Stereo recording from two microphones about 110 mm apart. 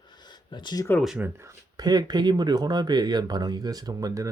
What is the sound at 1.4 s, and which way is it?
Speech, 40° right (ahead or behind).